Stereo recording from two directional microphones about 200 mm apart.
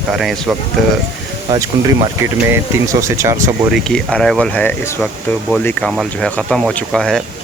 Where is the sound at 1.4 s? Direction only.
15° right (ahead or behind).